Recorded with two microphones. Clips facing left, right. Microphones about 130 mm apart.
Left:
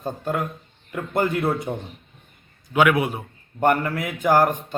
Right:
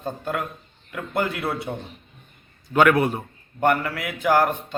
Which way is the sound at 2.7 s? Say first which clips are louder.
Right 1 dB; 5° left (ahead or behind).